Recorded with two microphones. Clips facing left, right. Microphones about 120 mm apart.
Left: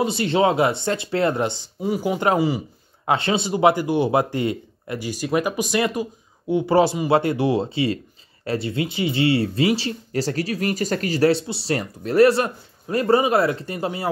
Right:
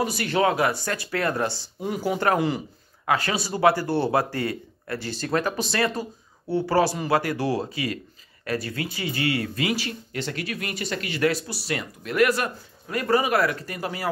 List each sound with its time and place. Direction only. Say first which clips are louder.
0.0 s speech: left 4 dB; 25° left (ahead or behind)
2.3 s speech: left 3 dB; 5° left (ahead or behind)
3.1 s speech: left 4 dB; 25° left (ahead or behind)